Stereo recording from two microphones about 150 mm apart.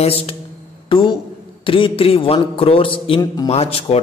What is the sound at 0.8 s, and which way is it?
A man's voice, 30° left (ahead or behind).